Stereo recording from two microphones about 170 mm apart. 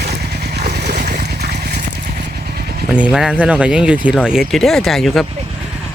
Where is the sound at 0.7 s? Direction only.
45° right (ahead or behind).